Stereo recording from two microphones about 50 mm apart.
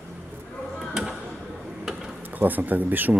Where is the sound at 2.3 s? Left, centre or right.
Right.